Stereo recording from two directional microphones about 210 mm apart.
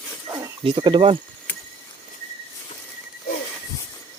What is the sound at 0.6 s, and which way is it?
Speech, 25° right (ahead or behind).